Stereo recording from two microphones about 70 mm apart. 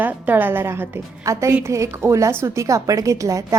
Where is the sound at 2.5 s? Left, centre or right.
Right.